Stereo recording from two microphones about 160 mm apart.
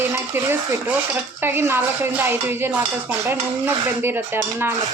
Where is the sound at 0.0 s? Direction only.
15° right (ahead or behind).